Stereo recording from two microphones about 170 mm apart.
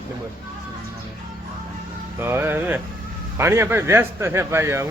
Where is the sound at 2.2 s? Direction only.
15° right (ahead or behind).